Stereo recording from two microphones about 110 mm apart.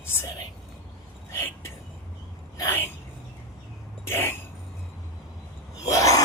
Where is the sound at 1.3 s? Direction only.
25° left (ahead or behind).